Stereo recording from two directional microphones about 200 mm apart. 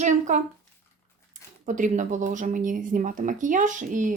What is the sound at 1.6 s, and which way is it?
Speech, 40° right (ahead or behind).